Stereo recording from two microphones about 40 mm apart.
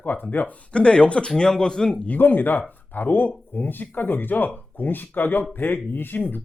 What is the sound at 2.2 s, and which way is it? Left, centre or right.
Speech, left.